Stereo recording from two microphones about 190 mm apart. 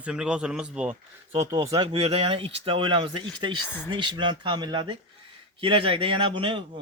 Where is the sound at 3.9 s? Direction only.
25° right (ahead or behind).